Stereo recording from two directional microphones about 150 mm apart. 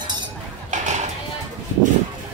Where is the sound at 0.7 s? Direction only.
50° right (ahead or behind).